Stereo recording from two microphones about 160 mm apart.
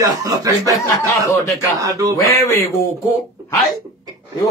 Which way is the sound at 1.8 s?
20° right (ahead or behind).